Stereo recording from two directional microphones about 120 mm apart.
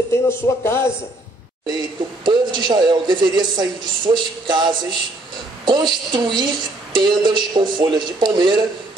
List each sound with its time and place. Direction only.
0.1 s speech: 20° left (ahead or behind)
1.7 s speech: 40° right (ahead or behind)